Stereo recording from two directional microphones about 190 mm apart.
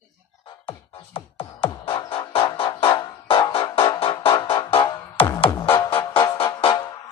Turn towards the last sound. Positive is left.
turn(degrees=25)  # may be behind; listen again after turning